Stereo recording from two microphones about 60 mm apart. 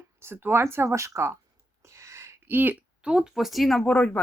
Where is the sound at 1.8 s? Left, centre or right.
Right.